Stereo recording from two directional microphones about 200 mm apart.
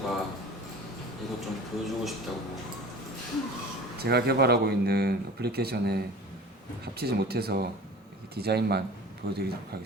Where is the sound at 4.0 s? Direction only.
55° right (ahead or behind).